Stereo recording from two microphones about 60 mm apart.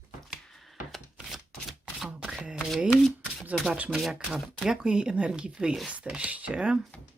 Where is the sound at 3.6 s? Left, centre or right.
Right.